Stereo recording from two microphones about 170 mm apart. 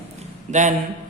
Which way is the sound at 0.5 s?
45° right (ahead or behind).